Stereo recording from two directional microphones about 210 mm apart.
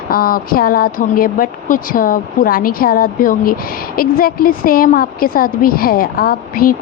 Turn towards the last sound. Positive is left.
turn(degrees=45)  # may be behind; listen again after turning